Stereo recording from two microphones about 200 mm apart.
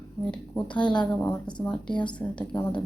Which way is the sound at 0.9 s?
20° left (ahead or behind).